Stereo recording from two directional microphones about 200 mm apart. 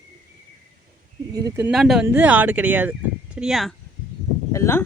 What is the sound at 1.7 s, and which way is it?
Speech, centre (ahead or behind).